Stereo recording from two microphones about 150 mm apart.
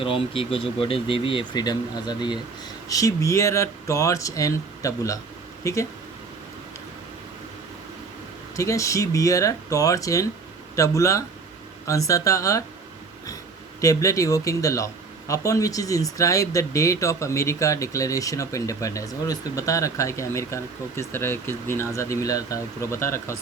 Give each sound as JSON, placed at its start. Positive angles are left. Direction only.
{"t": 0.0, "sound": "speech", "side_deg": 40}
{"t": 8.5, "sound": "speech", "side_deg": 20}
{"t": 13.8, "sound": "speech", "side_deg": 20}